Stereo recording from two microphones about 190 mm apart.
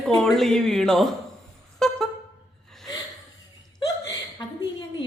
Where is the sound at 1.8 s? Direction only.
Centre (ahead or behind).